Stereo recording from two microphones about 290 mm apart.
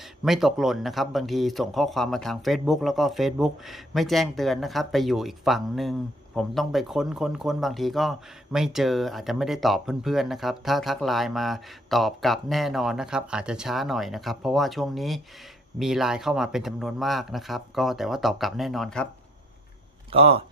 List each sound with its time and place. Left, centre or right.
0.2 s speech: centre
20.1 s speech: centre